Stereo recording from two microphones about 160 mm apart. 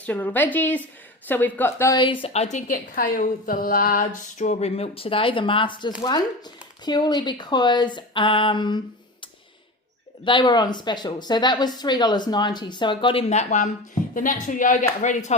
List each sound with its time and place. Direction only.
0.0 s a woman's voice: 10° left (ahead or behind)
2.2 s a woman's voice: 40° left (ahead or behind)
10.2 s a woman's voice: 30° left (ahead or behind); by 15.4 s 50° left (ahead or behind)